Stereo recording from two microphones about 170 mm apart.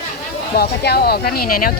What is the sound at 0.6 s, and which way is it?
Speech, 65° left (ahead or behind).